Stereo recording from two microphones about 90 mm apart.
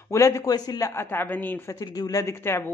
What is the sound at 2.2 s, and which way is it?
Speech, 30° left (ahead or behind).